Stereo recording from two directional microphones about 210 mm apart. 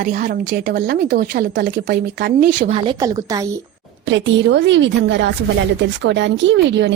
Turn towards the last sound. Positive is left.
turn(degrees=-55)  # may be behind; listen again after turning